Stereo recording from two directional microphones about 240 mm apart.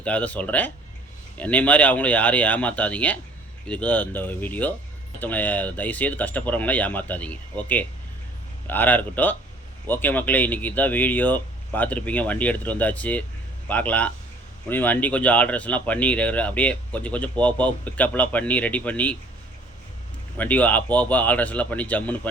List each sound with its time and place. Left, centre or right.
0.0 s speech: centre
20.3 s speech: centre